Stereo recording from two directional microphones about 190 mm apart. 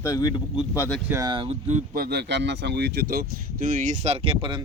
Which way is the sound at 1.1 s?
20° right (ahead or behind).